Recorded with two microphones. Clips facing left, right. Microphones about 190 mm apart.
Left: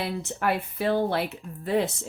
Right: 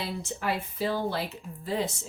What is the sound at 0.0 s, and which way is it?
Speech, 60° left (ahead or behind).